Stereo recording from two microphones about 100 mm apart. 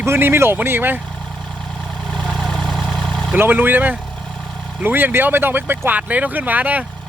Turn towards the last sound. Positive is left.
turn(degrees=-15)  # may be behind; listen again after turning